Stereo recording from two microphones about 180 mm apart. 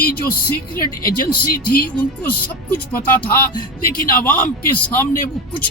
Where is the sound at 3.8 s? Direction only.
50° left (ahead or behind).